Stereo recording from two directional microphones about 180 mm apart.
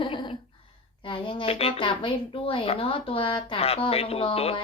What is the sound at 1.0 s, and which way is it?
A woman's voice, 30° left (ahead or behind).